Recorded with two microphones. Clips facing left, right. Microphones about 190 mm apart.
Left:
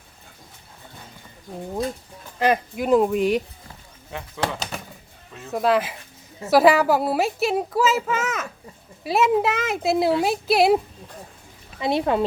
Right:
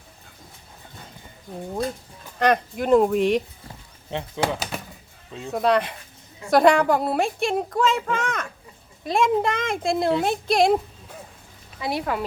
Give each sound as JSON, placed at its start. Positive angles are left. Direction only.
{"t": 2.4, "sound": "a child's voice", "side_deg": 5}
{"t": 4.4, "sound": "speech", "side_deg": -20}
{"t": 5.5, "sound": "a child's voice", "side_deg": 0}
{"t": 11.8, "sound": "speech", "side_deg": 25}